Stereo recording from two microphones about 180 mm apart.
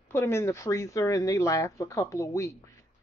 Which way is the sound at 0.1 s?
15° left (ahead or behind).